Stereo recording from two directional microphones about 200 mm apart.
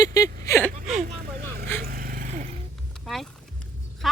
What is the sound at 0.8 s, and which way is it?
Speech, 30° right (ahead or behind).